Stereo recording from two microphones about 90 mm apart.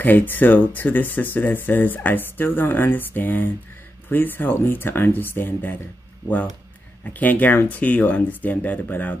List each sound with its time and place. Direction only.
0.0 s speech: 20° left (ahead or behind)
7.2 s speech: 20° left (ahead or behind)